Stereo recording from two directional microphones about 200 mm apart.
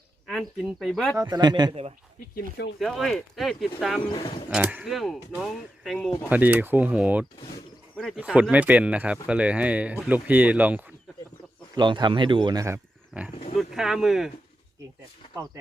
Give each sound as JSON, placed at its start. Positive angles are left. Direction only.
{"t": 0.3, "sound": "speech", "side_deg": 0}
{"t": 1.1, "sound": "speech", "side_deg": -15}
{"t": 2.3, "sound": "speech", "side_deg": 55}
{"t": 2.7, "sound": "speech", "side_deg": 0}
{"t": 11.7, "sound": "speech", "side_deg": -20}